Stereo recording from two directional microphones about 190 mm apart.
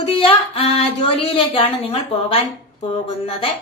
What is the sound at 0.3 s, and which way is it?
Speech, 30° left (ahead or behind).